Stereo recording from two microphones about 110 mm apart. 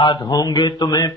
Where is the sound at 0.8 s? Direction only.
30° left (ahead or behind).